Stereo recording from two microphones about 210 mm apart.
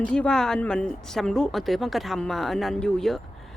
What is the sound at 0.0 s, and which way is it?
Speech, 5° left (ahead or behind).